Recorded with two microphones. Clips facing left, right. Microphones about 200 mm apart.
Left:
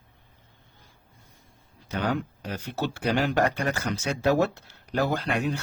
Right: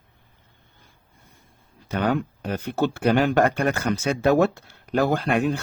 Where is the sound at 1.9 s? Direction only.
55° right (ahead or behind).